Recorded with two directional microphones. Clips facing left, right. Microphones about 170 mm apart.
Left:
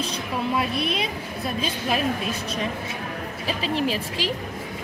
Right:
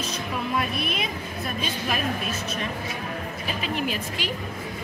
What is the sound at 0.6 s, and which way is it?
Speech, 30° left (ahead or behind).